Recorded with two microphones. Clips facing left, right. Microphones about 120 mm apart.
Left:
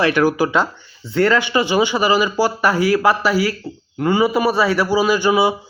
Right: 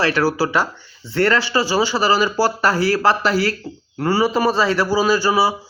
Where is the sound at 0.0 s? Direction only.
20° left (ahead or behind).